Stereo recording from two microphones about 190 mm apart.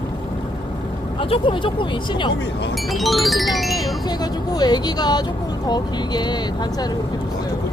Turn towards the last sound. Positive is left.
turn(degrees=20)  # may be behind; listen again after turning